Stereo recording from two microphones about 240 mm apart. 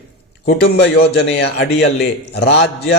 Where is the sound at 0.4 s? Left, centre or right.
Left.